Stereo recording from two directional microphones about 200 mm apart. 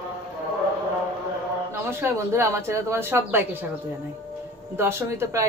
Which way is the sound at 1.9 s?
10° right (ahead or behind).